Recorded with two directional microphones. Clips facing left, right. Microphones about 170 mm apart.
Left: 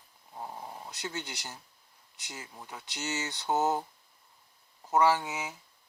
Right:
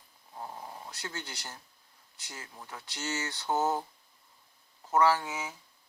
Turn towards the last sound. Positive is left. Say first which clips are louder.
# even
turn(degrees=20)  # may be behind; listen again after turning